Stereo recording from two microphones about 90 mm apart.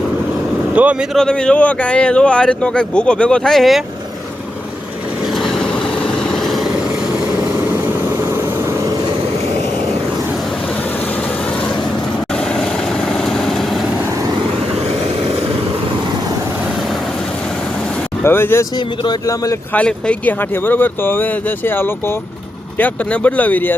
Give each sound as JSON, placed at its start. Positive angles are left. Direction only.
{"t": 0.7, "sound": "speech", "side_deg": -15}
{"t": 1.1, "sound": "speech", "side_deg": 10}
{"t": 5.4, "sound": "vehicle", "side_deg": 5}
{"t": 13.1, "sound": "vehicle", "side_deg": 5}
{"t": 18.2, "sound": "speech", "side_deg": 25}
{"t": 19.2, "sound": "speech", "side_deg": 40}
{"t": 19.7, "sound": "speech", "side_deg": 15}